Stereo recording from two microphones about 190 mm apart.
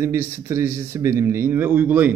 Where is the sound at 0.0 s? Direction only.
15° right (ahead or behind).